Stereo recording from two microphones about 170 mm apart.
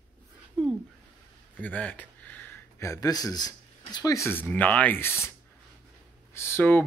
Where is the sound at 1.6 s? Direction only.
10° left (ahead or behind).